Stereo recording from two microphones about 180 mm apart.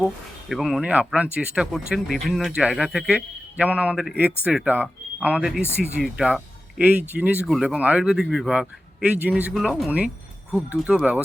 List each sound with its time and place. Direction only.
0.0 s speech: centre (ahead or behind)